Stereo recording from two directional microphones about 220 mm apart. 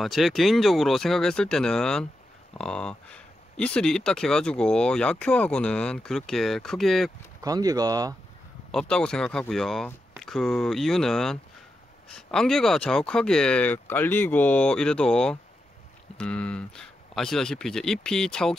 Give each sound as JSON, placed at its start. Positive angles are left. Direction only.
{"t": 0.0, "sound": "speech", "side_deg": 0}
{"t": 7.4, "sound": "speech", "side_deg": -15}
{"t": 8.7, "sound": "speech", "side_deg": 5}